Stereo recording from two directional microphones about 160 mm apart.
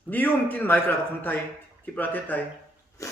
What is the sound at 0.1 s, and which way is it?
A man's voice, 10° left (ahead or behind).